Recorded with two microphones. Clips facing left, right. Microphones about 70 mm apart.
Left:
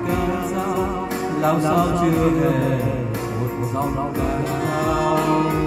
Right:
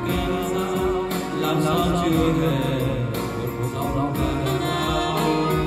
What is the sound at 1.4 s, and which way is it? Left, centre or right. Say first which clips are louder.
Mantra: left 3 dB; centre.